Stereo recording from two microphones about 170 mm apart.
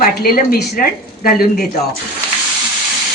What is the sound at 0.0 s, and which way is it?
A woman's voice, 60° left (ahead or behind).